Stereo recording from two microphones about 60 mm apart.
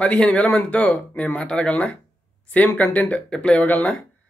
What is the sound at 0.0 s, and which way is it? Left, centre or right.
Speech, left.